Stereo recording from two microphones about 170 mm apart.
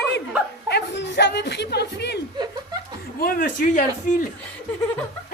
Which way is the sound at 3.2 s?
60° left (ahead or behind).